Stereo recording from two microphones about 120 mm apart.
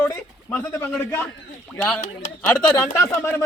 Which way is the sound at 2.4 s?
20° left (ahead or behind).